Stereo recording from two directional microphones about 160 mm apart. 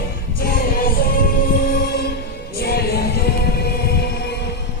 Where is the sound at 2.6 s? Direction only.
75° left (ahead or behind).